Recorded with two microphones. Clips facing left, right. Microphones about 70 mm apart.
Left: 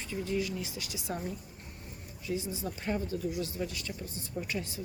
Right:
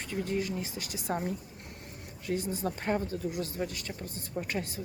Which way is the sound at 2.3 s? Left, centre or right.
Right.